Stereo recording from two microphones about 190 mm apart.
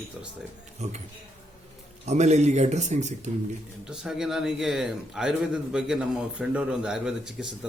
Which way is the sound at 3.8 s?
5° right (ahead or behind).